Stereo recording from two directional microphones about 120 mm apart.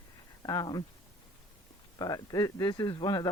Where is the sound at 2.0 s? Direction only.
30° left (ahead or behind).